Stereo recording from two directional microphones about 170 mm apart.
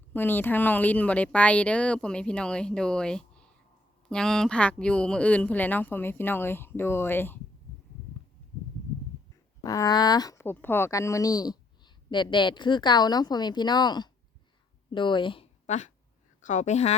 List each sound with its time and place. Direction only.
0.1 s speech: 10° left (ahead or behind)
9.6 s speech: 20° left (ahead or behind)
15.6 s a woman's voice: 45° left (ahead or behind)